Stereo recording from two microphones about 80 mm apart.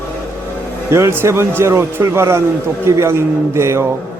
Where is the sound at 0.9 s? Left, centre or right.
Right.